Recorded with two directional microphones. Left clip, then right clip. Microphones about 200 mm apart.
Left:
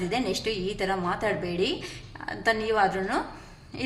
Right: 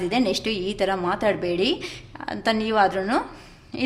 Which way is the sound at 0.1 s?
45° right (ahead or behind).